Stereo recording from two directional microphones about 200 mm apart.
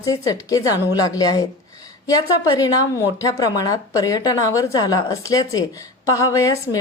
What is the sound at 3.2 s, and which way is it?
A woman's voice, 20° left (ahead or behind).